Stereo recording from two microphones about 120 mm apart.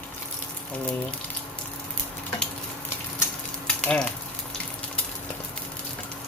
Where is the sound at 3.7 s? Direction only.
10° left (ahead or behind).